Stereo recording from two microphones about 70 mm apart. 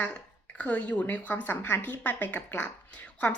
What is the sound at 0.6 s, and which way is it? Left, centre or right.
A woman's voice, centre.